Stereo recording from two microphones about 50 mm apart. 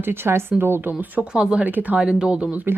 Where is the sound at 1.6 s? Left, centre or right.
Right.